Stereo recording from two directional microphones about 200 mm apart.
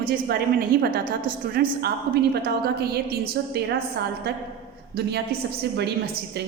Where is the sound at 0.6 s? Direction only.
50° right (ahead or behind).